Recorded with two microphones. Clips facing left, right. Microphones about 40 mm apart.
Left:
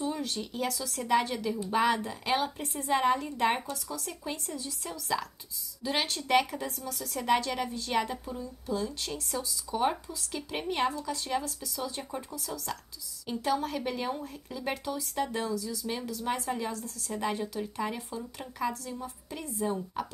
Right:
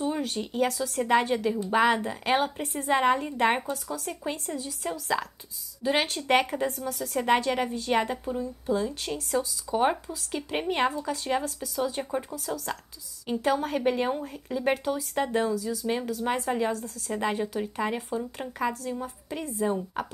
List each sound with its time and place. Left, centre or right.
0.0 s a woman's voice: right
13.3 s a woman's voice: right